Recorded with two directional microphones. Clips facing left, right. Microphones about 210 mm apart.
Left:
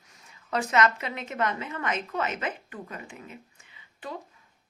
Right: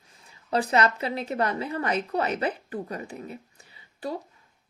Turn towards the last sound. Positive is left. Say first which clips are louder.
# right 6 dB
turn(degrees=-35)  # may be behind; listen again after turning